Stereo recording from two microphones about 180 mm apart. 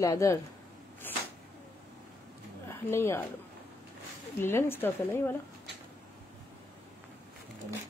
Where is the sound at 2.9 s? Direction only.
15° left (ahead or behind).